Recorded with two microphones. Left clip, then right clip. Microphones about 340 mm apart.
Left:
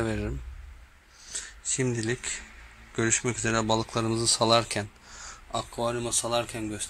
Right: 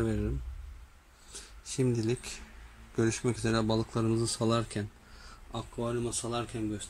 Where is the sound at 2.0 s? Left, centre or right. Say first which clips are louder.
Left 3 dB; centre.